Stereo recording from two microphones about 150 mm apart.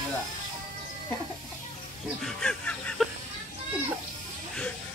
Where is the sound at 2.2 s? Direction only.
5° left (ahead or behind).